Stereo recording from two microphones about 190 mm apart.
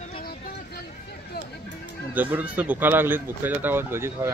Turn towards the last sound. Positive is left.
turn(degrees=-15)  # may be behind; listen again after turning